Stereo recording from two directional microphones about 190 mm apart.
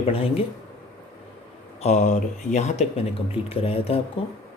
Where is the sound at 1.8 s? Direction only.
35° left (ahead or behind).